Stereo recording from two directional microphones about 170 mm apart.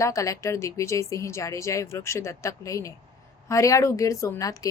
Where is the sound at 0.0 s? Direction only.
20° left (ahead or behind).